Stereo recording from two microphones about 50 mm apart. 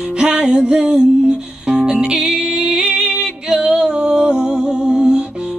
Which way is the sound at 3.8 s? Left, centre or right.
Right.